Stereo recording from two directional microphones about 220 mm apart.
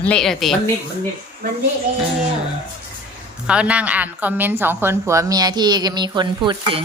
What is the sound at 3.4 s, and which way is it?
A woman's voice, 5° right (ahead or behind).